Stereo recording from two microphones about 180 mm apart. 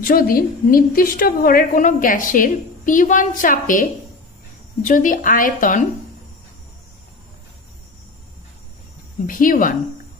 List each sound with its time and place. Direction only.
0.0 s a woman's voice: 55° left (ahead or behind)
4.8 s a woman's voice: 45° left (ahead or behind)
9.2 s a woman's voice: 50° left (ahead or behind)